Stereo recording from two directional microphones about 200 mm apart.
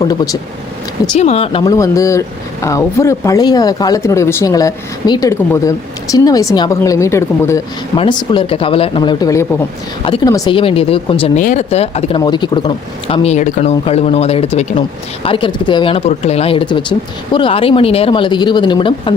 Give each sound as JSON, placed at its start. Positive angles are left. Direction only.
{"t": 0.0, "sound": "speech", "side_deg": 20}
{"t": 1.2, "sound": "speech", "side_deg": 30}
{"t": 7.9, "sound": "speech", "side_deg": 25}